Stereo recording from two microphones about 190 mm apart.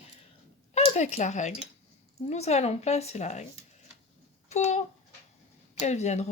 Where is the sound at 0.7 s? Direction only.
35° left (ahead or behind).